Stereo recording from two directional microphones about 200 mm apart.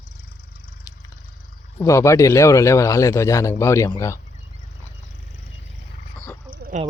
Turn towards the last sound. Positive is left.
turn(degrees=-35)  # may be behind; listen again after turning